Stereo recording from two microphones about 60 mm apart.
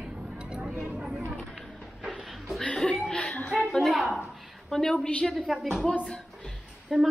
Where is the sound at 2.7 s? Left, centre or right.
Centre.